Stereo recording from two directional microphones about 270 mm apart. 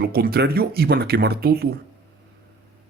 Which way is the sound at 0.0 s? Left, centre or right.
Right.